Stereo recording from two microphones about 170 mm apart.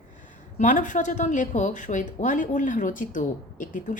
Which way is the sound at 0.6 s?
50° left (ahead or behind).